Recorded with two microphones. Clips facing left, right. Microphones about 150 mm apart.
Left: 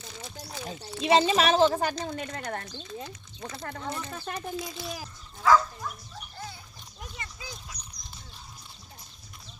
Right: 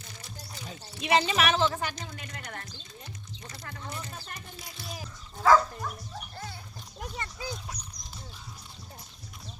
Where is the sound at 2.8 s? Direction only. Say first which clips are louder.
Left 8 dB; 65° left (ahead or behind).